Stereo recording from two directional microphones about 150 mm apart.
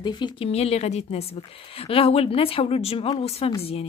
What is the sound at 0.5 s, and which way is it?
A woman's voice, 45° left (ahead or behind).